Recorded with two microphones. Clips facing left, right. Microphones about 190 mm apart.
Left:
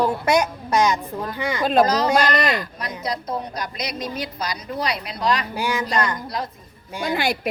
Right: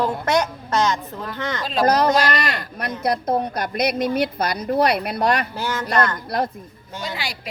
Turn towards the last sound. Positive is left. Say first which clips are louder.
# left 7 dB
turn(degrees=55)  # may be behind; listen again after turning